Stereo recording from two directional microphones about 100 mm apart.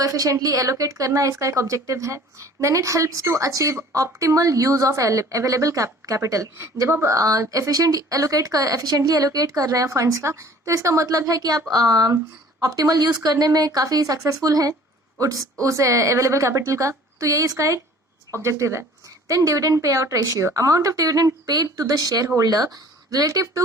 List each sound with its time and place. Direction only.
0.0 s a woman's voice: 35° right (ahead or behind)